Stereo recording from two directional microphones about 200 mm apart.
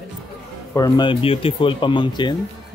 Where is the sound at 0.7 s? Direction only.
20° left (ahead or behind).